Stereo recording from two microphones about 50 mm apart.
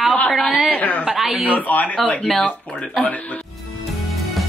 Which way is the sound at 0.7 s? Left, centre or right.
Left.